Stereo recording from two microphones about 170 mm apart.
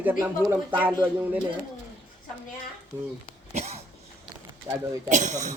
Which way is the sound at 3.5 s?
40° right (ahead or behind).